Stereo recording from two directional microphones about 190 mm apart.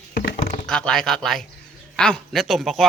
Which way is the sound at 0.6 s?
5° left (ahead or behind).